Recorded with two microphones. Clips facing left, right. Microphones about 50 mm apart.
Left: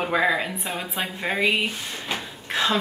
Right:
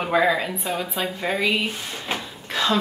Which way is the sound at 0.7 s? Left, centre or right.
Centre.